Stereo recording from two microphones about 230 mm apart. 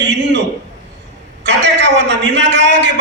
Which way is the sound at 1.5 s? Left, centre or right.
Right.